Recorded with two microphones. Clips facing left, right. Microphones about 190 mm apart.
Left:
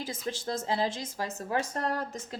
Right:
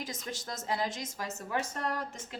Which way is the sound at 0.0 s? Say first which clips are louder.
Left 5 dB; 30° left (ahead or behind).